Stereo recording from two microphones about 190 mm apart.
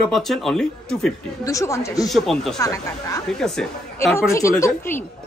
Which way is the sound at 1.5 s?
15° left (ahead or behind).